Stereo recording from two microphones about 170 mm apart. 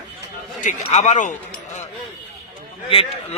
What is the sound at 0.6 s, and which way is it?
Speech, 45° left (ahead or behind).